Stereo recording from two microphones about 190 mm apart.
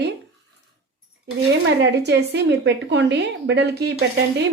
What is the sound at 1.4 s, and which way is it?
A woman's voice, 65° right (ahead or behind).